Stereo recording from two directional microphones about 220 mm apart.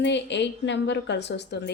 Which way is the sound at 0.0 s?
55° left (ahead or behind).